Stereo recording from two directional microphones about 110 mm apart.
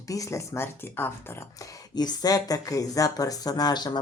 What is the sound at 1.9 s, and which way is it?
Speech, 40° left (ahead or behind).